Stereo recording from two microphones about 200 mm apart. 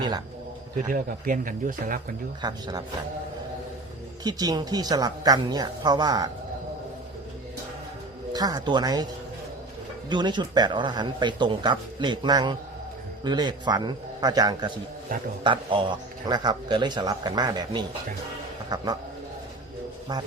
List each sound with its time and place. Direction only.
0.8 s speech: 40° right (ahead or behind)
2.4 s speech: 20° right (ahead or behind)
4.2 s speech: 20° right (ahead or behind)
8.3 s speech: 20° right (ahead or behind)
10.1 s speech: 20° right (ahead or behind)